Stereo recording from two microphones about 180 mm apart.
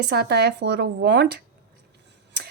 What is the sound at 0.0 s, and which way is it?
A woman's voice, 65° right (ahead or behind).